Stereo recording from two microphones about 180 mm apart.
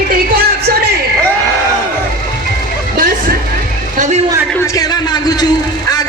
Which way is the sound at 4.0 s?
40° right (ahead or behind).